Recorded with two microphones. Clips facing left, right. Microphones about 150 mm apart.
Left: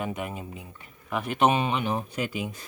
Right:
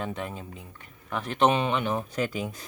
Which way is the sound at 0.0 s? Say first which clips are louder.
Left 1 dB; 10° left (ahead or behind).